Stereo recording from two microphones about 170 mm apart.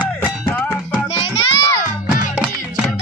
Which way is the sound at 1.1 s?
30° left (ahead or behind).